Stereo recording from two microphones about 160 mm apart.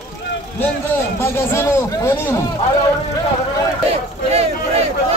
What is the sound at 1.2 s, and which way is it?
A man's voice, 15° left (ahead or behind).